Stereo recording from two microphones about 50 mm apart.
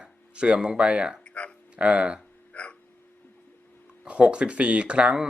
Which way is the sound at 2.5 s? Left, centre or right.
Left.